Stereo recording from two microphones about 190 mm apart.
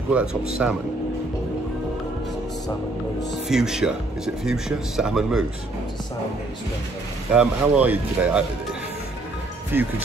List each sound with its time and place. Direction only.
0.1 s speech: 5° right (ahead or behind)
3.4 s speech: 5° right (ahead or behind)
7.3 s speech: 5° right (ahead or behind)
9.7 s speech: 10° right (ahead or behind)